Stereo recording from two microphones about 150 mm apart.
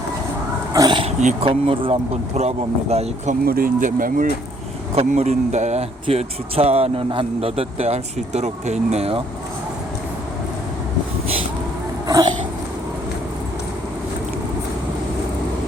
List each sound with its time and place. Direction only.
0.7 s dog: 25° right (ahead or behind)
1.0 s speech: 55° right (ahead or behind)
1.5 s speech: 35° right (ahead or behind)
3.4 s speech: 80° right
4.9 s speech: 50° right (ahead or behind)
12.0 s a sound: 25° right (ahead or behind)